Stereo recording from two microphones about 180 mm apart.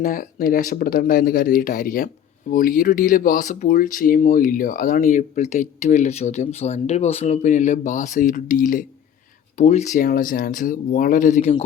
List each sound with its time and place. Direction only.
0.0 s speech: 50° left (ahead or behind)